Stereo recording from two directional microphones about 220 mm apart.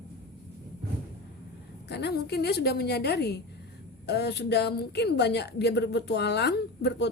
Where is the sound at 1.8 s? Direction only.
50° left (ahead or behind).